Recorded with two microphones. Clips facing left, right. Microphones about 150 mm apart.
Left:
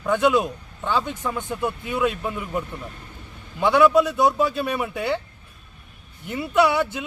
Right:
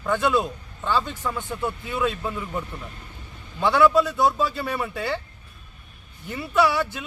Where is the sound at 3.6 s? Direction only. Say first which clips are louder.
Left 2 dB; 15° left (ahead or behind).